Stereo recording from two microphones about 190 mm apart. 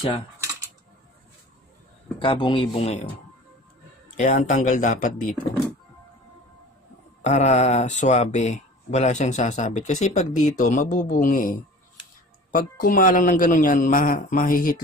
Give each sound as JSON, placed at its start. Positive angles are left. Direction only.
{"t": 2.1, "sound": "speech", "side_deg": 25}
{"t": 4.2, "sound": "speech", "side_deg": 40}
{"t": 7.2, "sound": "speech", "side_deg": 35}
{"t": 12.5, "sound": "a man's voice", "side_deg": 45}